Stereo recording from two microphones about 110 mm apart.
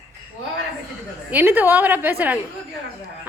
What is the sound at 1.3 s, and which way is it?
A woman's voice, 15° right (ahead or behind).